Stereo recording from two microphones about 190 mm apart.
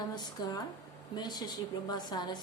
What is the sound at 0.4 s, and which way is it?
A woman's voice, 20° left (ahead or behind).